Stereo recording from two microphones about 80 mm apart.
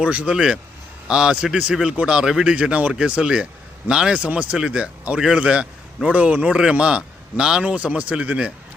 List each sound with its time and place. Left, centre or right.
0.0 s speech: centre